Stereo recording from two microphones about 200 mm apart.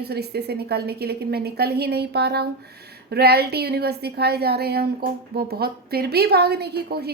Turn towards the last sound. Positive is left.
turn(degrees=-50)  # may be behind; listen again after turning